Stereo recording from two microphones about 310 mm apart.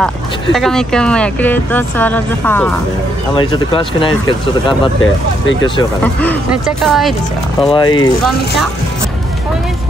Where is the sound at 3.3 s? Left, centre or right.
Centre.